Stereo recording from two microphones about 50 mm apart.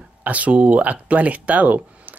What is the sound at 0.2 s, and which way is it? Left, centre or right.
Speech, right.